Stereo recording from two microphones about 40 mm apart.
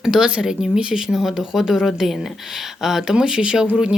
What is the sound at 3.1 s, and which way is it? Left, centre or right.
Speech, right.